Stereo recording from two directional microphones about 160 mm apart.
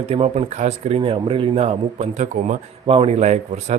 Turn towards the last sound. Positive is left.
turn(degrees=-45)  # may be behind; listen again after turning